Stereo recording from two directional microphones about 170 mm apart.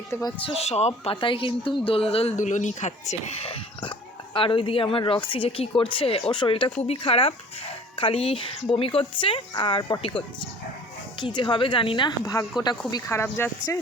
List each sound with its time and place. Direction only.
0.1 s speech: 20° left (ahead or behind)
0.5 s speech: 40° left (ahead or behind); by 13.7 s 15° left (ahead or behind)